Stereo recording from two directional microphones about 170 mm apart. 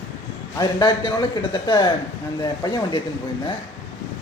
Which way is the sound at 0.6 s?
25° left (ahead or behind).